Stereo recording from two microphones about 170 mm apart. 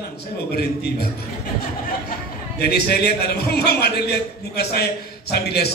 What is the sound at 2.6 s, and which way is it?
A man's voice, 70° left (ahead or behind).